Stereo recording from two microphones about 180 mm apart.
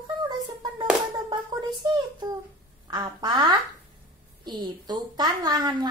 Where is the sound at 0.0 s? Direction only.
25° right (ahead or behind).